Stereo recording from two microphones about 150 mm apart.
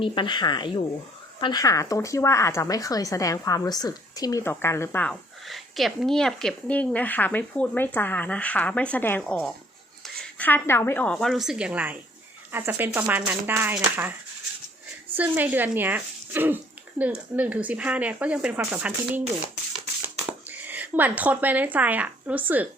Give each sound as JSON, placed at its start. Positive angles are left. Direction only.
{"t": 0.0, "sound": "speech", "side_deg": 30}
{"t": 5.5, "sound": "a woman's voice", "side_deg": 0}
{"t": 15.1, "sound": "speech", "side_deg": -10}
{"t": 20.7, "sound": "speech", "side_deg": -10}